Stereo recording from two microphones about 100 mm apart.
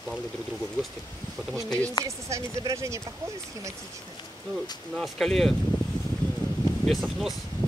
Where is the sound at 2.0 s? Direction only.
35° right (ahead or behind).